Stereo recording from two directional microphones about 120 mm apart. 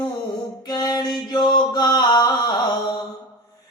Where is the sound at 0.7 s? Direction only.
35° left (ahead or behind).